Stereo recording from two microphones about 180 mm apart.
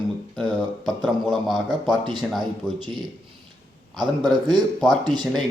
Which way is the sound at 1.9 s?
25° right (ahead or behind).